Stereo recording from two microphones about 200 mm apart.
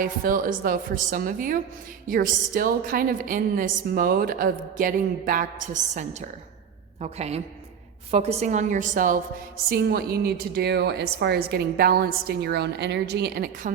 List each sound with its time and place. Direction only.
0.0 s a woman's voice: 45° right (ahead or behind)
9.6 s a woman's voice: 50° right (ahead or behind)